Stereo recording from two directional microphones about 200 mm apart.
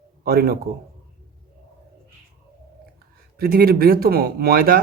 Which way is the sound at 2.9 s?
50° right (ahead or behind).